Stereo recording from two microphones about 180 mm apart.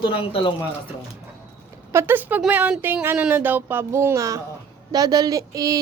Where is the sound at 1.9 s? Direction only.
15° right (ahead or behind).